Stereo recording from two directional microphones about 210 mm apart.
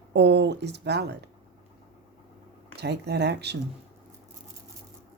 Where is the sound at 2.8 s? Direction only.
50° right (ahead or behind).